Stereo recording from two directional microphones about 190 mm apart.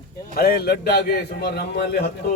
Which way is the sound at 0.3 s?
55° left (ahead or behind).